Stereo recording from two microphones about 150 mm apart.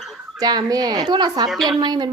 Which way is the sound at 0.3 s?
25° right (ahead or behind).